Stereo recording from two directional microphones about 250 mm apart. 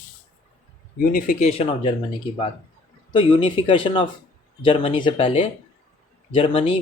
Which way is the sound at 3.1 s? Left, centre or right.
Centre.